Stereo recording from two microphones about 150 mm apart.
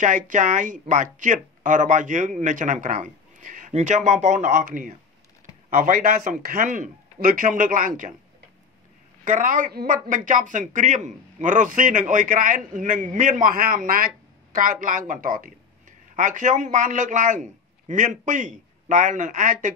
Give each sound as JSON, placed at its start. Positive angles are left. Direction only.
{"t": 0.0, "sound": "a man's voice", "side_deg": -55}
{"t": 9.2, "sound": "a man's voice", "side_deg": -60}